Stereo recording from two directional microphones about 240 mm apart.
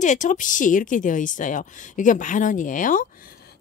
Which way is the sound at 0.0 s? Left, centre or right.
Left.